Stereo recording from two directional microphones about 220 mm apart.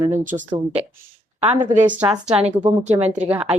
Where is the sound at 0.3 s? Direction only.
35° right (ahead or behind).